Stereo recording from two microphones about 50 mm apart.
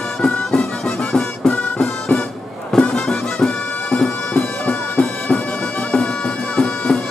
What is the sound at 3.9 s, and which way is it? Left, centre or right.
Bagpipes, centre.